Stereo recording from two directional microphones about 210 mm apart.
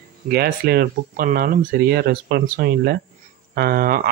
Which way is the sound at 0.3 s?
50° right (ahead or behind).